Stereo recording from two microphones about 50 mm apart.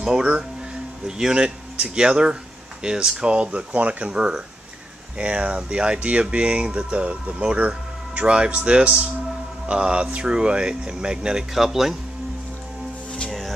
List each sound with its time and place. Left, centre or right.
0.0 s speech: centre
11.5 s speech: centre